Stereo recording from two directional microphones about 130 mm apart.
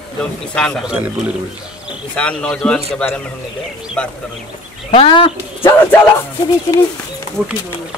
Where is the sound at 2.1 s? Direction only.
10° left (ahead or behind).